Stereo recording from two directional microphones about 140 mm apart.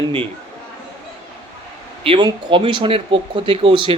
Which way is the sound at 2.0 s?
35° right (ahead or behind).